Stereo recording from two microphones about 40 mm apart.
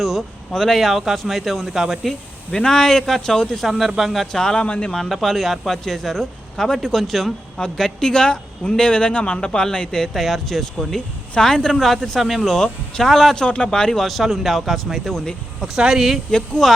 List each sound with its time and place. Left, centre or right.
0.0 s a sound: centre
0.5 s speech: centre
0.8 s speech: centre
2.5 s speech: centre
3.7 s speech: centre
4.3 s speech: centre
4.6 s speech: left
4.9 s speech: centre
8.1 s speech: left
10.2 s speech: centre
12.5 s speech: centre
13.3 s speech: left
14.0 s speech: centre
15.8 s speech: centre